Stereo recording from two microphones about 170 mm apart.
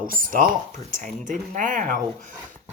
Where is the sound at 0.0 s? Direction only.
55° right (ahead or behind).